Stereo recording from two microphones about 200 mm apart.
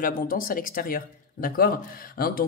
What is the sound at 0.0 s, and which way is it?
Speech, 45° left (ahead or behind).